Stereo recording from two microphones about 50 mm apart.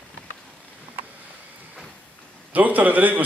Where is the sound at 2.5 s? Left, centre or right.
Right.